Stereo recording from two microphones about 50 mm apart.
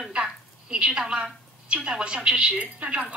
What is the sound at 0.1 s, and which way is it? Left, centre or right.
A woman's voice, centre.